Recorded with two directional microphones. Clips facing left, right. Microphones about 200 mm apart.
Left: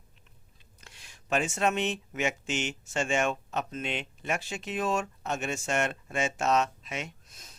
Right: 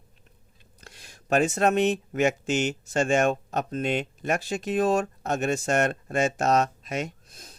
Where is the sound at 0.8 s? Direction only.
40° right (ahead or behind).